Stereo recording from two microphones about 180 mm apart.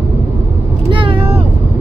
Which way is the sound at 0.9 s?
30° right (ahead or behind).